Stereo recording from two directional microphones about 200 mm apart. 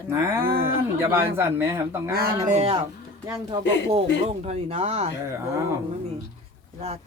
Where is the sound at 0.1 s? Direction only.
15° right (ahead or behind).